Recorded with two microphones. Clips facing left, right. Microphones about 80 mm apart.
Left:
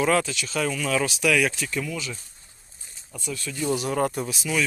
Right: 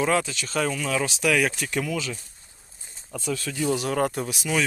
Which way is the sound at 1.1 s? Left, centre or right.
Right.